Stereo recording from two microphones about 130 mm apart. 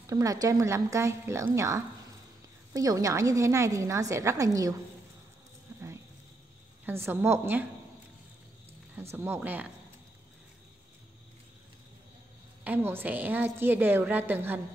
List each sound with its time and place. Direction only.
0.0 s a woman's voice: 25° right (ahead or behind)
5.7 s a sound: 20° right (ahead or behind)
6.9 s a woman's voice: 20° right (ahead or behind)
9.1 s a woman's voice: 15° right (ahead or behind)
12.6 s a woman's voice: 15° right (ahead or behind)